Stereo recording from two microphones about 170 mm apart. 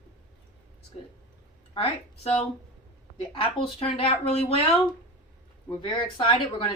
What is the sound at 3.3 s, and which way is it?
A woman's voice, 35° left (ahead or behind).